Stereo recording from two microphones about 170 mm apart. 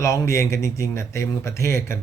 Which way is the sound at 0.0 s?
15° left (ahead or behind).